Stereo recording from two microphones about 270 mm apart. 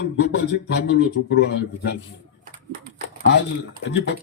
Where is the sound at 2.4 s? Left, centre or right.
Right.